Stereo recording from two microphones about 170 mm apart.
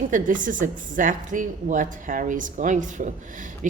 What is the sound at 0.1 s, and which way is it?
A woman's voice, 50° right (ahead or behind).